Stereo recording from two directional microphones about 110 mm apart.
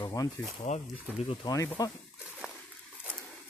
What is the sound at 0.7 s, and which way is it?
Speech, 90° left.